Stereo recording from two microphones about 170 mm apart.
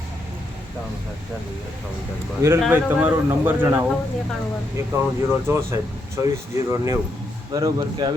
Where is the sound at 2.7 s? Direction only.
10° right (ahead or behind).